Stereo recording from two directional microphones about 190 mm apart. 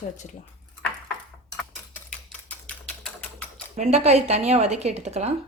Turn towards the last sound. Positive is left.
turn(degrees=-35)  # may be behind; listen again after turning